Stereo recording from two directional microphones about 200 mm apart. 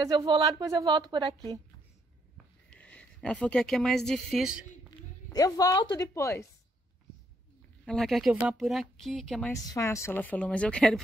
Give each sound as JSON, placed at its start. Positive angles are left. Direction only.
{"t": 0.0, "sound": "speech", "side_deg": -20}
{"t": 2.7, "sound": "speech", "side_deg": 5}
{"t": 5.3, "sound": "speech", "side_deg": 20}
{"t": 7.8, "sound": "speech", "side_deg": 0}
{"t": 9.5, "sound": "speech", "side_deg": 15}